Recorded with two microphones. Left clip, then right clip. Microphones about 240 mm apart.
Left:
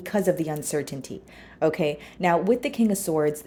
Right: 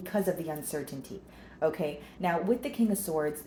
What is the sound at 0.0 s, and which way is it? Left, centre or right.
A woman's voice, left.